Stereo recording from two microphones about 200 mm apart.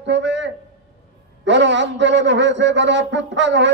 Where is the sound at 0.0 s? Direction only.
60° right (ahead or behind).